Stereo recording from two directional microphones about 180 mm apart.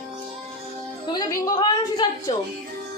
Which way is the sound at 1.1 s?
20° left (ahead or behind).